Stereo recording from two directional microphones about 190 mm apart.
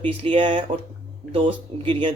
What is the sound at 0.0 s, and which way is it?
Speech, 30° right (ahead or behind).